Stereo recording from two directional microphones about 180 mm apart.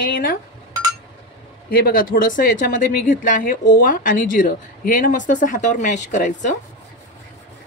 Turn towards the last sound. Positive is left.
turn(degrees=45)  # may be behind; listen again after turning